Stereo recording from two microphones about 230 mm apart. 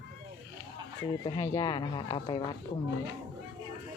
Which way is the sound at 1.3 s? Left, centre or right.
Centre.